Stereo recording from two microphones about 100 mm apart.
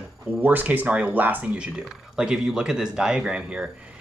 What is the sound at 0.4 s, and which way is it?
Speech, 20° right (ahead or behind).